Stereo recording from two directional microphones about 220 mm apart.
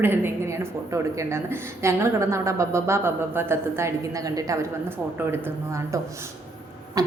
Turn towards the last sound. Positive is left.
turn(degrees=-15)  # may be behind; listen again after turning